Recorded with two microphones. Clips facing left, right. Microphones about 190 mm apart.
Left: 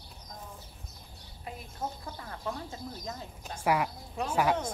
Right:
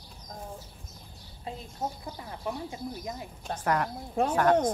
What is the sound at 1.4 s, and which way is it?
Speech, 20° right (ahead or behind).